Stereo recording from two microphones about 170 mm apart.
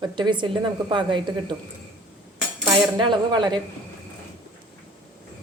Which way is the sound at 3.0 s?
25° right (ahead or behind).